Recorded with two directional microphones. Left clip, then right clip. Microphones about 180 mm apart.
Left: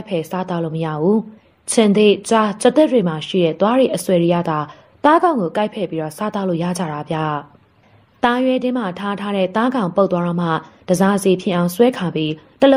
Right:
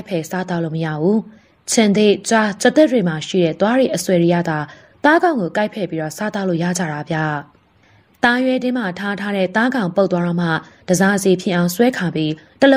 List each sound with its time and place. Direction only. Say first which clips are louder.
0.0 s a woman's voice: left 1 dB; 40° right (ahead or behind)